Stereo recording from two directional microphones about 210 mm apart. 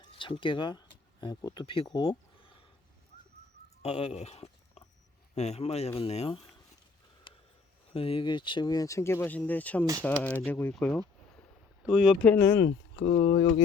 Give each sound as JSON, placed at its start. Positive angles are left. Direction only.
{"t": 0.0, "sound": "speech", "side_deg": 25}
{"t": 3.8, "sound": "a man's voice", "side_deg": 30}
{"t": 7.9, "sound": "speech", "side_deg": 25}
{"t": 13.0, "sound": "a man's voice", "side_deg": 30}